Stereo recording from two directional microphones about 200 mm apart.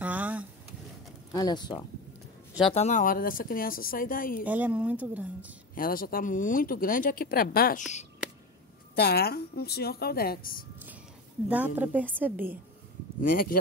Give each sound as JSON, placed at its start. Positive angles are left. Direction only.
{"t": 0.0, "sound": "a sound", "side_deg": -10}
{"t": 1.3, "sound": "speech", "side_deg": 20}
{"t": 2.7, "sound": "speech", "side_deg": 35}
{"t": 4.5, "sound": "a woman's voice", "side_deg": -10}
{"t": 5.8, "sound": "speech", "side_deg": 45}
{"t": 8.9, "sound": "speech", "side_deg": 50}
{"t": 11.4, "sound": "a woman's voice", "side_deg": -10}
{"t": 13.2, "sound": "speech", "side_deg": 45}